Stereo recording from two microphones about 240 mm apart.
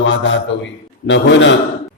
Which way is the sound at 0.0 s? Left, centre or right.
Left.